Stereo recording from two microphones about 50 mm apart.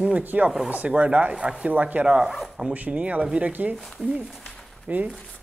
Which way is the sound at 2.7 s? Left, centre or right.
Right.